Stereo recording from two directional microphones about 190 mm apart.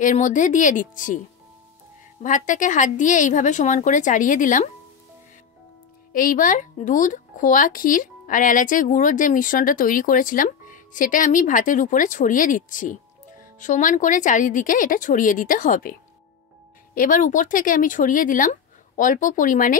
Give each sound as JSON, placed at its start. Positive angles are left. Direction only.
{"t": 0.0, "sound": "a woman's voice", "side_deg": 40}
{"t": 2.2, "sound": "a woman's voice", "side_deg": 40}
{"t": 6.1, "sound": "speech", "side_deg": 45}